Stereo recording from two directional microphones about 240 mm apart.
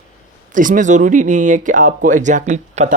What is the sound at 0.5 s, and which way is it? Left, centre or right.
Speech, right.